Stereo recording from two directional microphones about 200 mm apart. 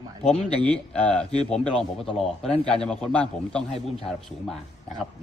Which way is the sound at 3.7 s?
30° left (ahead or behind).